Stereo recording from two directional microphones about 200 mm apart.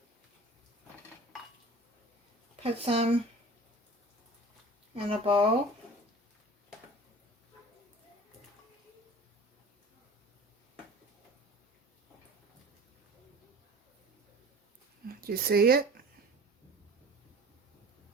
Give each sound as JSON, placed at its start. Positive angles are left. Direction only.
{"t": 2.6, "sound": "speech", "side_deg": -30}
{"t": 4.9, "sound": "speech", "side_deg": -25}
{"t": 15.0, "sound": "speech", "side_deg": -50}